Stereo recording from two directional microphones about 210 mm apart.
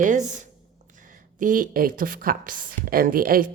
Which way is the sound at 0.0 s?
35° right (ahead or behind).